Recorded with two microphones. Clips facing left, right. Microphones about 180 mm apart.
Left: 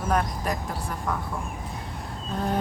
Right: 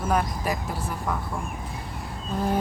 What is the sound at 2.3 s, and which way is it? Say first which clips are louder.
Speech: right 2 dB; 5° right (ahead or behind).